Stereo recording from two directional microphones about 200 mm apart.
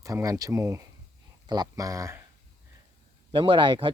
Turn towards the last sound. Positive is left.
turn(degrees=-25)  # may be behind; listen again after turning